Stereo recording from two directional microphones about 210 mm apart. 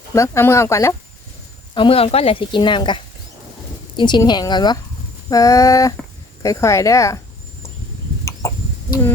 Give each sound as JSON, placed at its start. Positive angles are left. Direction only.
{"t": 0.1, "sound": "speech", "side_deg": 10}
{"t": 1.7, "sound": "a woman's voice", "side_deg": 25}
{"t": 8.2, "sound": "chicken", "side_deg": 15}